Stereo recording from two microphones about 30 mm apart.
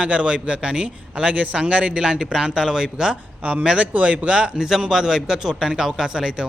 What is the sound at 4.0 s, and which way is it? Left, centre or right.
Speech, right.